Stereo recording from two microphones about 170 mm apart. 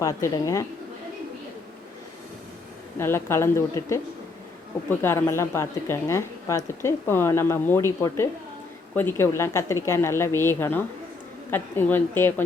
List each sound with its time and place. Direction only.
0.0 s a woman's voice: 20° left (ahead or behind)
3.0 s a woman's voice: 15° left (ahead or behind)